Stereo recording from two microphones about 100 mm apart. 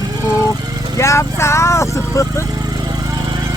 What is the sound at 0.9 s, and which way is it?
Speech, 30° left (ahead or behind).